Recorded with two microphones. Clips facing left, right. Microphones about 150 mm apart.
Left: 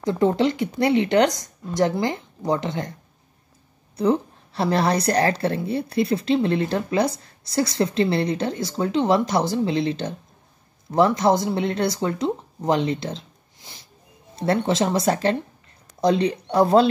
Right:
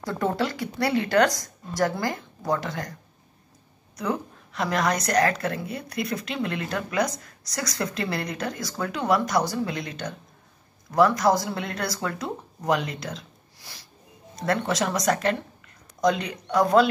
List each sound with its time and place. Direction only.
0.0 s a woman's voice: 20° left (ahead or behind)
3.9 s a woman's voice: 30° left (ahead or behind)